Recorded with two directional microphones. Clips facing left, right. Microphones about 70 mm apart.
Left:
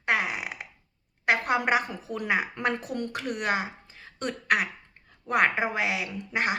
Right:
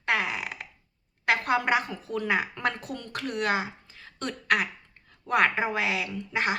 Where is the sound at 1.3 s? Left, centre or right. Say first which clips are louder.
Even; centre.